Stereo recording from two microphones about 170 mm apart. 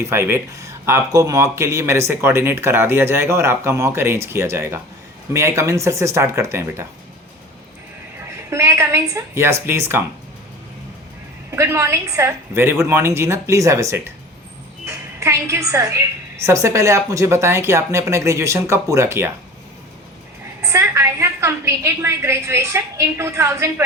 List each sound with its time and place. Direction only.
0.0 s speech: 15° right (ahead or behind)
8.4 s speech: 15° right (ahead or behind)
11.5 s speech: 15° right (ahead or behind)
20.6 s speech: 15° right (ahead or behind)